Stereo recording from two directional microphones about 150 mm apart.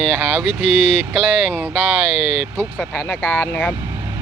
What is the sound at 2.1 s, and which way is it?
Speech, 45° left (ahead or behind).